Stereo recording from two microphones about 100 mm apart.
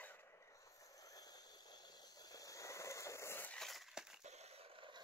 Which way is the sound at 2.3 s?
35° left (ahead or behind).